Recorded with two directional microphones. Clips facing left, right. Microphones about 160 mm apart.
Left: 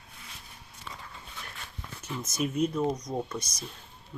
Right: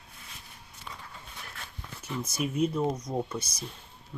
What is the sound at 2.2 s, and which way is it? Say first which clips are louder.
Speech: even; 10° right (ahead or behind).